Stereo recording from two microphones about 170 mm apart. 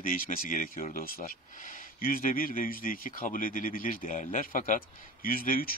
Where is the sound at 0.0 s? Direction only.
55° left (ahead or behind).